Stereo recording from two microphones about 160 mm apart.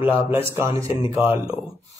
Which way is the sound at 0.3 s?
15° right (ahead or behind).